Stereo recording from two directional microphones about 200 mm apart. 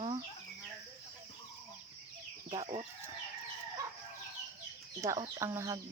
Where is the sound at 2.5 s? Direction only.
25° right (ahead or behind).